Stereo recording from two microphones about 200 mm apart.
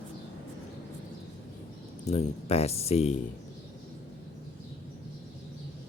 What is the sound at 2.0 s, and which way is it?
Speech, 30° left (ahead or behind).